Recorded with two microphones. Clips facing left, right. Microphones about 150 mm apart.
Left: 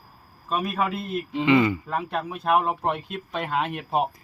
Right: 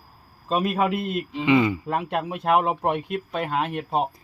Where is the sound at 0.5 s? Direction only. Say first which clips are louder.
Right 3 dB; 25° right (ahead or behind).